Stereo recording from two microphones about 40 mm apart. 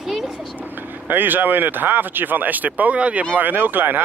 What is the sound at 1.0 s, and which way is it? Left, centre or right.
Speech, right.